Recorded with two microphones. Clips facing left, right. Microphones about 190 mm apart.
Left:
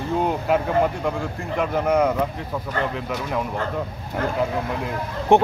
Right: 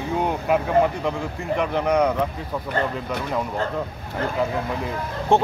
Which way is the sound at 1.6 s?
5° left (ahead or behind).